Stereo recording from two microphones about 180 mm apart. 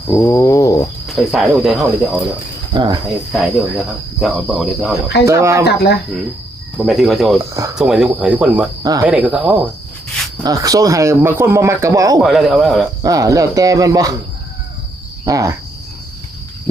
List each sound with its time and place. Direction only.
0.1 s a sound: 15° left (ahead or behind)
1.0 s cricket: centre (ahead or behind)
2.7 s speech: 25° right (ahead or behind)
3.3 s cricket: centre (ahead or behind)
5.2 s speech: 15° right (ahead or behind)
5.6 s speech: 65° left (ahead or behind)
6.7 s cricket: centre (ahead or behind)
8.8 s speech: 20° right (ahead or behind)
9.0 s cricket: 5° right (ahead or behind)
10.4 s speech: 20° right (ahead or behind)
12.2 s cricket: centre (ahead or behind)
13.0 s speech: 20° right (ahead or behind)
15.2 s cricket: 20° right (ahead or behind)